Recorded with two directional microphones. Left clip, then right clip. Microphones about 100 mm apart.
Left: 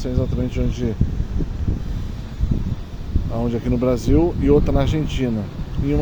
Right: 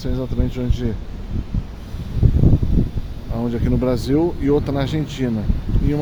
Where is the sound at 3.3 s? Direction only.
15° right (ahead or behind).